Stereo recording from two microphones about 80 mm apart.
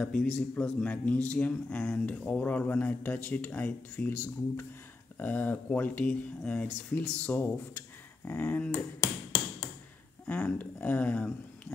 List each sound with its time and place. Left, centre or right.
0.0 s a man's voice: centre
10.2 s speech: left